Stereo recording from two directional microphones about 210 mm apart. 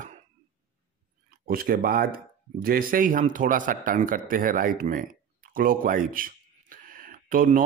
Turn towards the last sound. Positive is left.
turn(degrees=-40)  # may be behind; listen again after turning